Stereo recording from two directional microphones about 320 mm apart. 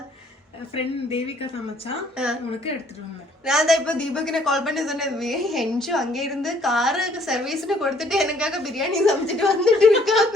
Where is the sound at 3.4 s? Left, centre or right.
Centre.